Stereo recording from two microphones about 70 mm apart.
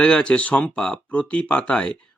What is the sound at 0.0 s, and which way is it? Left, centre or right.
Speech, centre.